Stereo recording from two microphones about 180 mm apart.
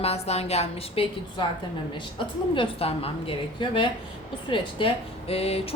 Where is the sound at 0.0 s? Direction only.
35° left (ahead or behind).